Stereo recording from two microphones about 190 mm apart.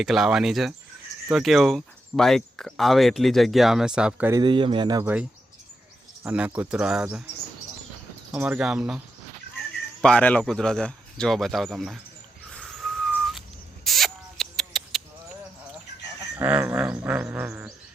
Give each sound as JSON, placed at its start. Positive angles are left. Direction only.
{"t": 0.0, "sound": "speech", "side_deg": 0}
{"t": 4.3, "sound": "speech", "side_deg": -20}
{"t": 6.2, "sound": "speech", "side_deg": -10}
{"t": 8.3, "sound": "speech", "side_deg": -5}
{"t": 10.0, "sound": "speech", "side_deg": 5}
{"t": 12.5, "sound": "whistling", "side_deg": 0}
{"t": 13.8, "sound": "rodents", "side_deg": 0}
{"t": 16.4, "sound": "speech", "side_deg": -10}